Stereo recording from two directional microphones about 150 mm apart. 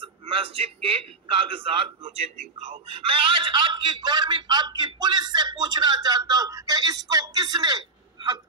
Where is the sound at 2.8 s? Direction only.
40° right (ahead or behind).